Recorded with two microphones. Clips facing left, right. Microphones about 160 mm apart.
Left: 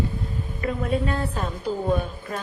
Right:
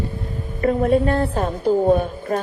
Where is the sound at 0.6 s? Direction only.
45° right (ahead or behind).